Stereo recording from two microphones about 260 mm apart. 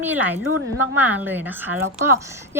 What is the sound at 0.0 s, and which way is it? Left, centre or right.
A woman's voice, centre.